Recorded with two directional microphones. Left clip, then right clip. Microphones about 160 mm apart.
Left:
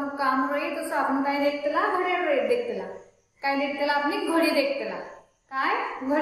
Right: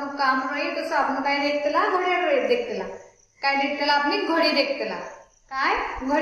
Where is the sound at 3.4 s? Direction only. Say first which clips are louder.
Right 3 dB; 15° right (ahead or behind).